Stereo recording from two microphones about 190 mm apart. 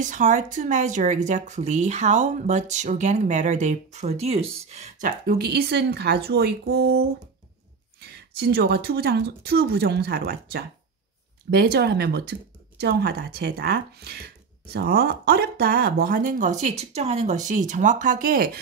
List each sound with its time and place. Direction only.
0.0 s a woman's voice: 40° right (ahead or behind)